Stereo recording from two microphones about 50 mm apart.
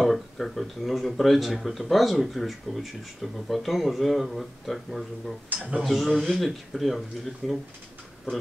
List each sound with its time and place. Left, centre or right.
0.0 s speech: centre
5.5 s speech: right
5.8 s speech: centre